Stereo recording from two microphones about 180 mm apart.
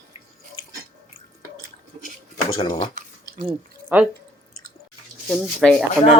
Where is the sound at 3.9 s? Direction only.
10° right (ahead or behind).